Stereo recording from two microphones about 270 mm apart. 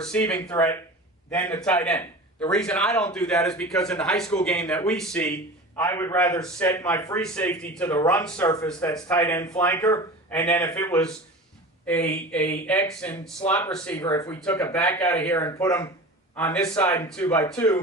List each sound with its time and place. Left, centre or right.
0.0 s a man's voice: centre